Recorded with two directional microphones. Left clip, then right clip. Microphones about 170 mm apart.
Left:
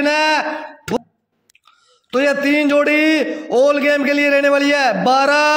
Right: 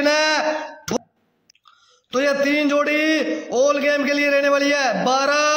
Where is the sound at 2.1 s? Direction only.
25° left (ahead or behind).